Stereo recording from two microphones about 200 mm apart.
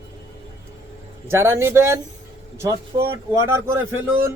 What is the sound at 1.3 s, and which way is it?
Speech, 15° right (ahead or behind).